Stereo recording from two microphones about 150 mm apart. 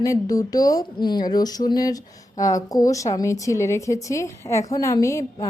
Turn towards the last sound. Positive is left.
turn(degrees=20)  # may be behind; listen again after turning